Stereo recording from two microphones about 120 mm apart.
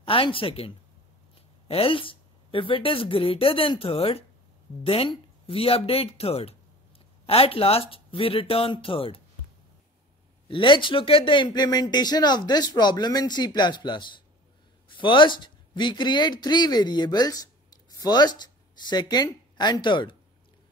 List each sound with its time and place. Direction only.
0.0 s a woman's voice: 50° left (ahead or behind)
10.5 s speech: 45° left (ahead or behind)